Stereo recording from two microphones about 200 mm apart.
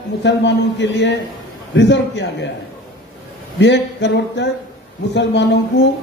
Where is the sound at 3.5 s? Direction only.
60° left (ahead or behind).